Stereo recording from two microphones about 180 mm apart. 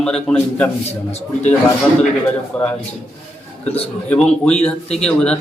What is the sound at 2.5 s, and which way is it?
Speech, 5° left (ahead or behind).